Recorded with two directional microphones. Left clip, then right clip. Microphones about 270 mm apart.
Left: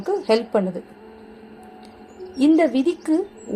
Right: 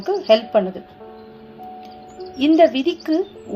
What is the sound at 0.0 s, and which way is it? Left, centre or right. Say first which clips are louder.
Speech: right 4 dB; left.